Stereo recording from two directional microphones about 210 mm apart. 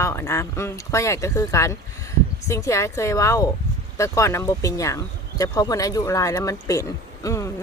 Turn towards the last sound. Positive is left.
turn(degrees=15)  # may be behind; listen again after turning